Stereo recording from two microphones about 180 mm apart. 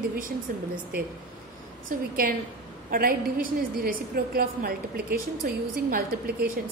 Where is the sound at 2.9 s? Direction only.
50° right (ahead or behind).